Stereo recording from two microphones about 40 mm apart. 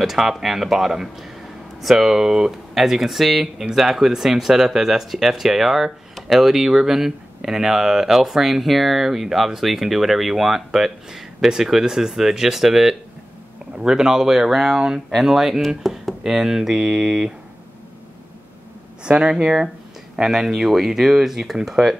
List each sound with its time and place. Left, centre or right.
0.0 s speech: centre
15.8 s a sound: centre
16.2 s speech: centre
19.0 s speech: right